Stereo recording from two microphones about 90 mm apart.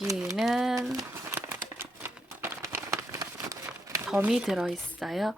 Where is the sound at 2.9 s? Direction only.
40° right (ahead or behind).